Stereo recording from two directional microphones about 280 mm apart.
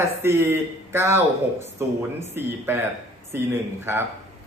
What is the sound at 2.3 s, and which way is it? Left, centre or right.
Speech, centre.